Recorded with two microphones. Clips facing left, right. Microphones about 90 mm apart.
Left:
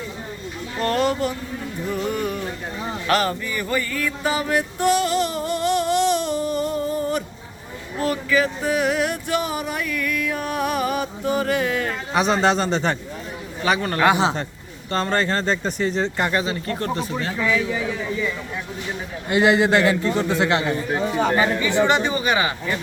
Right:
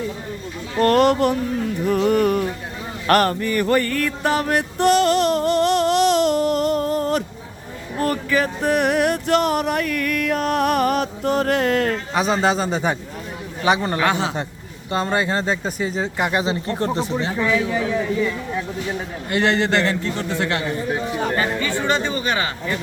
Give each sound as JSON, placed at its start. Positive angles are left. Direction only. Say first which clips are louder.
{"t": 0.8, "sound": "music", "louder": "right 6 dB", "side_deg": -55}
{"t": 7.9, "sound": "music", "louder": "even", "side_deg": -45}
{"t": 12.1, "sound": "a man's voice", "louder": "left 2 dB", "side_deg": 0}
{"t": 13.7, "sound": "speech", "louder": "even", "side_deg": -20}
{"t": 16.4, "sound": "speech", "louder": "right 3 dB", "side_deg": -25}
{"t": 19.3, "sound": "a man's voice", "louder": "left 2 dB", "side_deg": 10}